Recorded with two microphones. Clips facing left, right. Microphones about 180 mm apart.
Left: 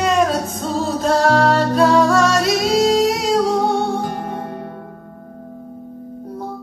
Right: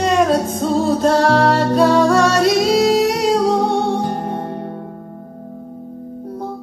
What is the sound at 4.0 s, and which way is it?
Music, 25° right (ahead or behind).